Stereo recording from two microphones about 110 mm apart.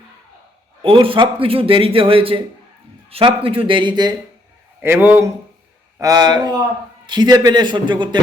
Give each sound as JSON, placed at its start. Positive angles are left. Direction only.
{"t": 0.8, "sound": "a man's voice", "side_deg": -50}
{"t": 4.8, "sound": "speech", "side_deg": -20}
{"t": 6.0, "sound": "a man's voice", "side_deg": -35}